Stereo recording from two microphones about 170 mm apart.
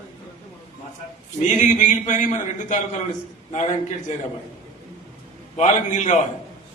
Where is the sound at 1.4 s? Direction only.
45° left (ahead or behind).